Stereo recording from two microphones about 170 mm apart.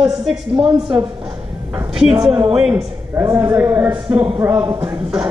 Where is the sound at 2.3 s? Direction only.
5° right (ahead or behind).